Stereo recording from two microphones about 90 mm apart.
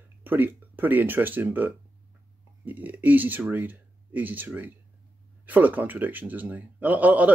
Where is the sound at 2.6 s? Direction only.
20° right (ahead or behind).